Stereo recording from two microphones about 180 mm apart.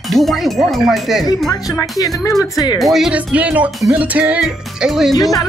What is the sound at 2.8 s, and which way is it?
Speech, centre (ahead or behind).